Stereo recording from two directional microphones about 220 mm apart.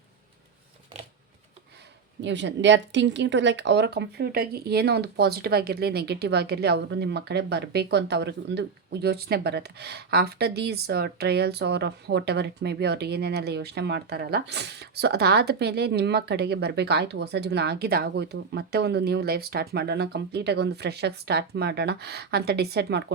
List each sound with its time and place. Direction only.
2.2 s speech: 55° right (ahead or behind)